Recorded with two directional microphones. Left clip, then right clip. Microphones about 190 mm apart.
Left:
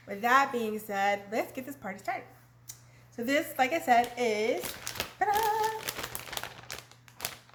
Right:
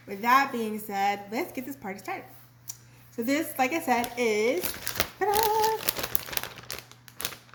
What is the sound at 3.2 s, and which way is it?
A woman's voice, 10° left (ahead or behind).